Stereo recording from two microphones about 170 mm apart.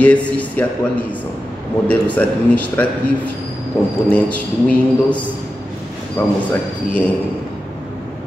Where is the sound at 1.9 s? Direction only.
10° left (ahead or behind).